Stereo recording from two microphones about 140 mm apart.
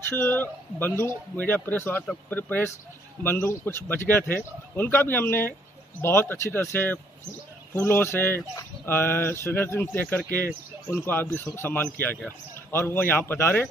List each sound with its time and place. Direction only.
0.1 s speech: 15° left (ahead or behind)